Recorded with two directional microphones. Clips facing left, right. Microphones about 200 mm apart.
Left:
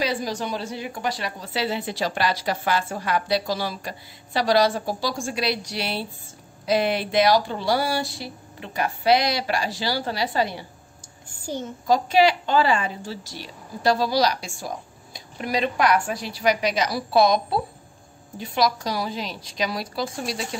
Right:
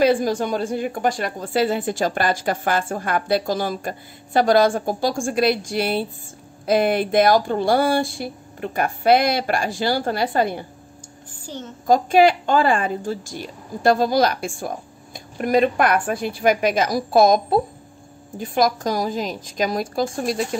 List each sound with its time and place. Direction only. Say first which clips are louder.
0.0 s a woman's voice: right 8 dB; 50° right (ahead or behind)
11.4 s a child's voice: left 3 dB; 10° left (ahead or behind)
11.9 s a woman's voice: right 4 dB; 50° right (ahead or behind)